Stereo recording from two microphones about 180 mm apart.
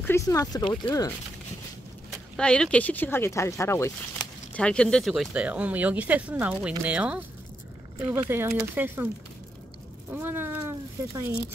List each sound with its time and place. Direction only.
0.0 s speech: 15° left (ahead or behind)
2.0 s speech: 5° left (ahead or behind); by 9.1 s 10° right (ahead or behind)
10.1 s speech: 10° right (ahead or behind)